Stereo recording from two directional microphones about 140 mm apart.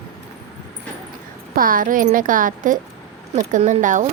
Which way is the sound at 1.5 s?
85° right.